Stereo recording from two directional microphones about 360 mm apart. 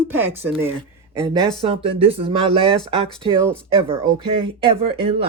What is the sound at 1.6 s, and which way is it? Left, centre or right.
Speech, centre.